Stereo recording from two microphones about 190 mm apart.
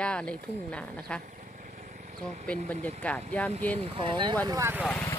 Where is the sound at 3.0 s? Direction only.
5° left (ahead or behind).